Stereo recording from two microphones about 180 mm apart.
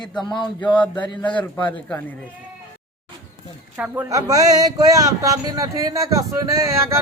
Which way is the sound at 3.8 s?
15° right (ahead or behind).